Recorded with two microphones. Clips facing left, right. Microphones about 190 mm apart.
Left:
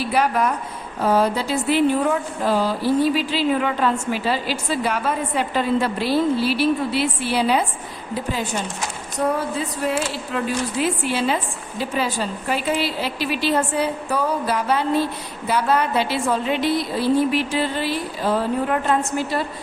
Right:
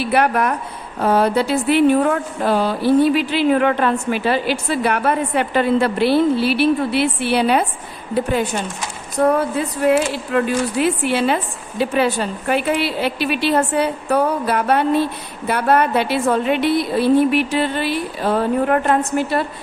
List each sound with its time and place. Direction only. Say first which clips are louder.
0.0 s a woman's voice: right 3 dB; 65° right (ahead or behind)
10.3 s a woman's voice: right 6 dB; 60° right (ahead or behind)